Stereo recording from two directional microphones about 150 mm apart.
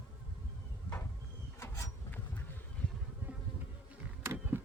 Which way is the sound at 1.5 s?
20° left (ahead or behind).